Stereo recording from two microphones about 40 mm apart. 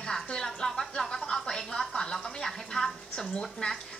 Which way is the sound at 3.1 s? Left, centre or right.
Left.